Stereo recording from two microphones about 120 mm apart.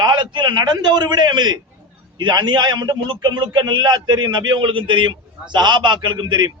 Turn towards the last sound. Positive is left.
turn(degrees=-40)  # may be behind; listen again after turning